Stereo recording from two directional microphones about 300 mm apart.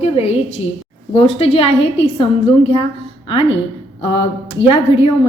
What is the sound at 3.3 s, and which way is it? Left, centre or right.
Speech, centre.